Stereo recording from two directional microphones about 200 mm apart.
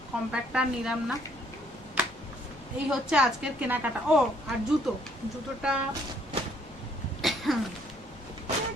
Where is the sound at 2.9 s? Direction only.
Centre (ahead or behind).